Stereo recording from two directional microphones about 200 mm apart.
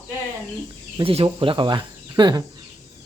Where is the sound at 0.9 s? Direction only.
25° right (ahead or behind).